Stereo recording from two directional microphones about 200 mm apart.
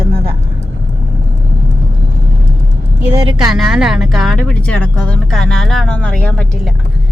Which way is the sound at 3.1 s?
20° right (ahead or behind).